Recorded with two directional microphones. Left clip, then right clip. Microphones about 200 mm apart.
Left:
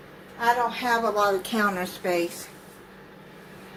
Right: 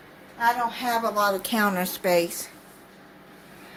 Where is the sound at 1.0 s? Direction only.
50° right (ahead or behind).